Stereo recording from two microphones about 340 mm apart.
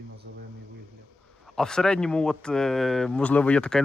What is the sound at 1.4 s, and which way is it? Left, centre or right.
Speech, centre.